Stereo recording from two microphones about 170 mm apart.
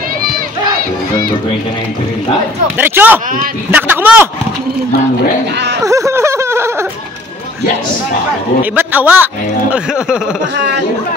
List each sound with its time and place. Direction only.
2.8 s a man's voice: 10° right (ahead or behind)
5.8 s speech: 20° right (ahead or behind)
8.7 s a man's voice: 10° right (ahead or behind)
10.5 s speech: 90° right